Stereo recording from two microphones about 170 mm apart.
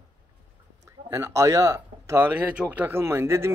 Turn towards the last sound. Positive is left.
turn(degrees=-15)  # may be behind; listen again after turning